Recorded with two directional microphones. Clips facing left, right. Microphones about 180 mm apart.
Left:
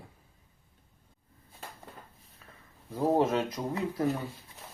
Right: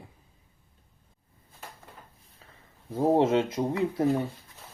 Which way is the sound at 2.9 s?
25° right (ahead or behind).